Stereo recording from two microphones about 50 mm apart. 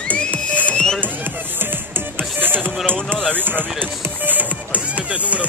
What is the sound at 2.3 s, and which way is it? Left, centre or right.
Music, right.